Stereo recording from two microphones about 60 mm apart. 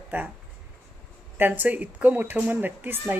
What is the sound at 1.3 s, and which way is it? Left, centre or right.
Speech, right.